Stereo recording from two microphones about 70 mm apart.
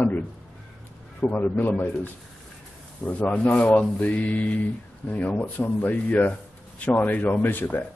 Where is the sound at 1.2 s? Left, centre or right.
Left.